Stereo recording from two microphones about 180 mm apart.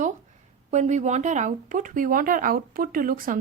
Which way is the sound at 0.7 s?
40° right (ahead or behind).